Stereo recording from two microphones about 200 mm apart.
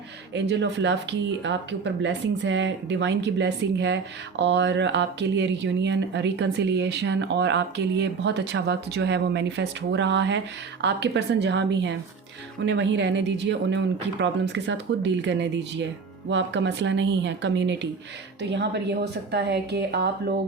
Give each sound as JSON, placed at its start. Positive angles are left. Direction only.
{"t": 0.3, "sound": "speech", "side_deg": -60}